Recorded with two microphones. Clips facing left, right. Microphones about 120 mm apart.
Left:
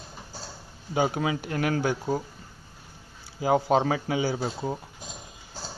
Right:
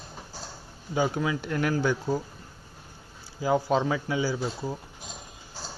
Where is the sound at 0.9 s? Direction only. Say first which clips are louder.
Left 1 dB; 60° left (ahead or behind).